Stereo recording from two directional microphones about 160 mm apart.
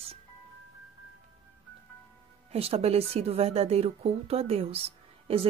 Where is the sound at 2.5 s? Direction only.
40° right (ahead or behind).